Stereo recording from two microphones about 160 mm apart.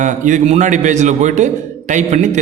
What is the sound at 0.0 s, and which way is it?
A man's voice, 50° right (ahead or behind).